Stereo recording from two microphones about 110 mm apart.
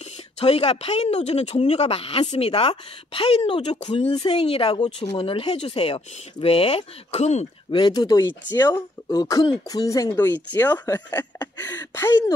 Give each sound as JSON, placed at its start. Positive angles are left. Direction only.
{"t": 0.4, "sound": "speech", "side_deg": 70}
{"t": 7.7, "sound": "speech", "side_deg": 40}
{"t": 10.1, "sound": "speech", "side_deg": 15}